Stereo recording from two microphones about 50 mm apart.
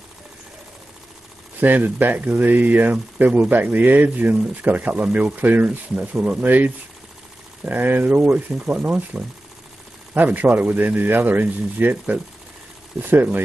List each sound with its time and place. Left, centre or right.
1.6 s speech: right